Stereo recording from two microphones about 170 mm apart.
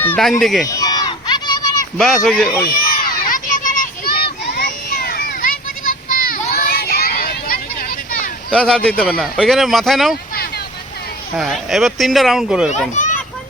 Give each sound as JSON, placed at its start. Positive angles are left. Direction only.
{"t": 0.2, "sound": "speech", "side_deg": 0}
{"t": 0.7, "sound": "a sound", "side_deg": 20}
{"t": 2.0, "sound": "speech", "side_deg": 0}
{"t": 3.0, "sound": "a sound", "side_deg": 55}
{"t": 8.4, "sound": "speech", "side_deg": 5}
{"t": 11.3, "sound": "speech", "side_deg": 0}
{"t": 12.9, "sound": "a child's voice", "side_deg": 45}